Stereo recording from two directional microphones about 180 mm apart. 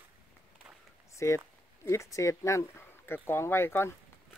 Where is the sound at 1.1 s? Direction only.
15° left (ahead or behind).